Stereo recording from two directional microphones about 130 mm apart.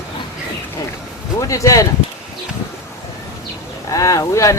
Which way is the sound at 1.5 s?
25° left (ahead or behind).